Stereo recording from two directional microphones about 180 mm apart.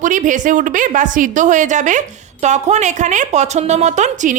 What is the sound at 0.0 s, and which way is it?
A woman's voice, 45° right (ahead or behind).